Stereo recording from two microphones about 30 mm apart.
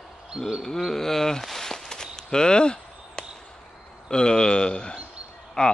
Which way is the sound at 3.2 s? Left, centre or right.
Centre.